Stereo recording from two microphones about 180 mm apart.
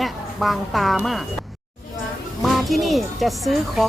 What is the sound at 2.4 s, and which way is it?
Speech, centre (ahead or behind).